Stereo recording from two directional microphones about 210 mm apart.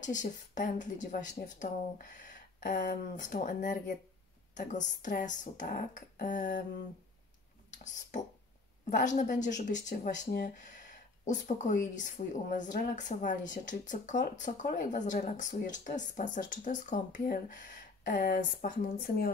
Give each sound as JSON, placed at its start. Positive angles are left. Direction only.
{"t": 0.0, "sound": "a woman's voice", "side_deg": 35}
{"t": 8.9, "sound": "a woman's voice", "side_deg": 35}